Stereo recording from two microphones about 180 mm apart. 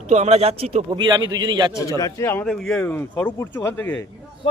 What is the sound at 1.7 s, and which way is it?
Speech, 20° left (ahead or behind).